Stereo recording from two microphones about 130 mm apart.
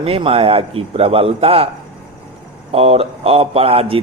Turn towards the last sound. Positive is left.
turn(degrees=-45)  # may be behind; listen again after turning